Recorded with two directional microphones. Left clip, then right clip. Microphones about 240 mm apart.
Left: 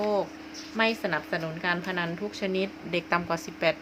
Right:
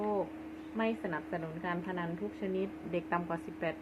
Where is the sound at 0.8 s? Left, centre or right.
Left.